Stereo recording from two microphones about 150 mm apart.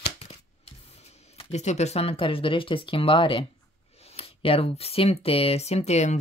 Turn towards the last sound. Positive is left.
turn(degrees=50)  # may be behind; listen again after turning